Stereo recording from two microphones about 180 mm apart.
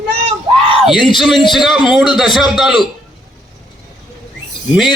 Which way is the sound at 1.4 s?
25° left (ahead or behind).